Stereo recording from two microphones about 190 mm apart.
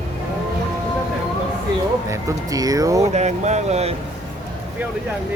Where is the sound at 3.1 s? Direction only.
35° right (ahead or behind).